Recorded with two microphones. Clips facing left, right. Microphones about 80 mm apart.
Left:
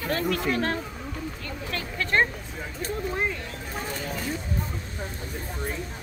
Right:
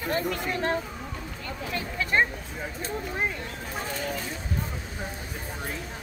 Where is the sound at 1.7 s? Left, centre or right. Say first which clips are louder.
Left 1 dB; centre.